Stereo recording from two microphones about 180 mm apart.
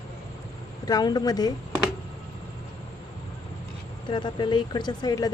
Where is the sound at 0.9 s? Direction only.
20° left (ahead or behind).